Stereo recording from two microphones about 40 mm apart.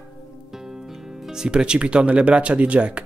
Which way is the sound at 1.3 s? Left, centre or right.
Centre.